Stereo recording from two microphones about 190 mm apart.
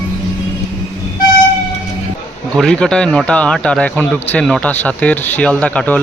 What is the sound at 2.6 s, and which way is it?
A man's voice, 5° left (ahead or behind).